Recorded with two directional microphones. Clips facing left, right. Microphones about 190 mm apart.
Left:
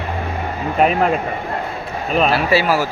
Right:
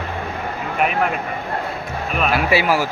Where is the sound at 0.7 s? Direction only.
35° left (ahead or behind).